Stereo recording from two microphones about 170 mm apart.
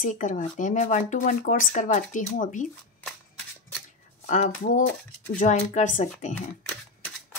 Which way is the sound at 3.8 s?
45° left (ahead or behind).